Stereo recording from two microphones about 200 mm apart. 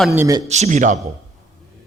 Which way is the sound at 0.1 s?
15° right (ahead or behind).